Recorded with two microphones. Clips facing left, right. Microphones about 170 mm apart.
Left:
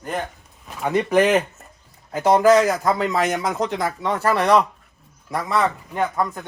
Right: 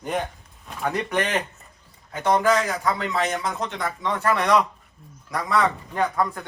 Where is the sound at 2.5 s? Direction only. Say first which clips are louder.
Left 6 dB; 40° left (ahead or behind).